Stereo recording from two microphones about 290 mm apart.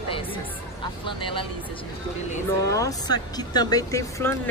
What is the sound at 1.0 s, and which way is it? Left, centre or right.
Speech, centre.